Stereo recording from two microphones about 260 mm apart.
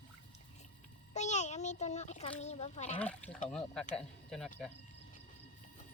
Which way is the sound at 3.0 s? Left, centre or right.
Centre.